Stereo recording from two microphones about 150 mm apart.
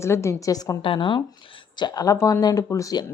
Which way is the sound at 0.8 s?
35° left (ahead or behind).